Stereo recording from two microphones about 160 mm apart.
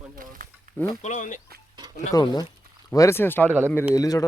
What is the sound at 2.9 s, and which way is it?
A man's voice, 15° left (ahead or behind).